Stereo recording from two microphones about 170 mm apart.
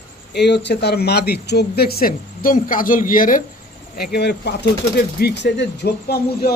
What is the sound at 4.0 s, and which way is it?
Speech, 70° left (ahead or behind).